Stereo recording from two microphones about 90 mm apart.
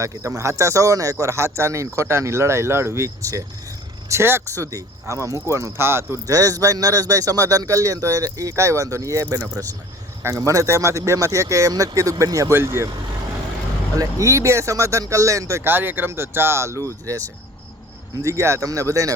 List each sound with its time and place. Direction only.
0.0 s speech: 35° right (ahead or behind)
6.2 s speech: 40° right (ahead or behind)
10.2 s speech: 35° right (ahead or behind)
13.9 s speech: 40° right (ahead or behind)
18.2 s speech: 30° right (ahead or behind)